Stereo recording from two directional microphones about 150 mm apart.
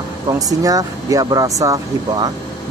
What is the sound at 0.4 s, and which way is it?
Speech, 25° right (ahead or behind).